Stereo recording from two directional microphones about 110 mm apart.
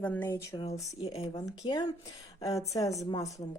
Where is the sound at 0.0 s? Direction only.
15° left (ahead or behind).